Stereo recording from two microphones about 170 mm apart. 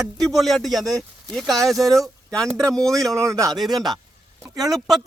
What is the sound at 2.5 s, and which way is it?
A man's voice, 20° right (ahead or behind).